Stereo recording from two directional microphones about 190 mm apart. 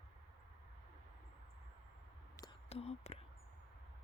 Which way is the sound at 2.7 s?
35° left (ahead or behind).